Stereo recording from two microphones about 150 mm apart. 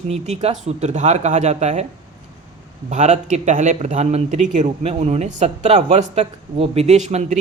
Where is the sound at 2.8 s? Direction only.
50° right (ahead or behind).